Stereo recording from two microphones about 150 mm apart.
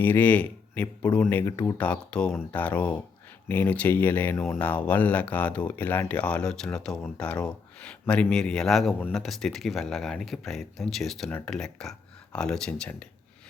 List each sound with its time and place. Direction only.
0.0 s a man's voice: 15° left (ahead or behind)
11.3 s speech: 15° left (ahead or behind)